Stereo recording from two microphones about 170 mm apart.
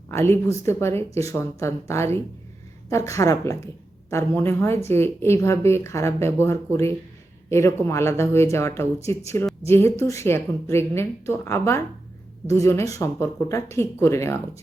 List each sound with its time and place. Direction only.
0.1 s a woman's voice: 15° left (ahead or behind)